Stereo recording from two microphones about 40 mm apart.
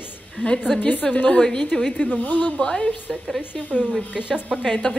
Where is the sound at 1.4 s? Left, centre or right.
Left.